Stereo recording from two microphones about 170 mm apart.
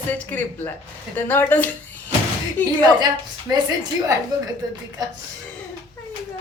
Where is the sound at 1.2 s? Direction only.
10° left (ahead or behind).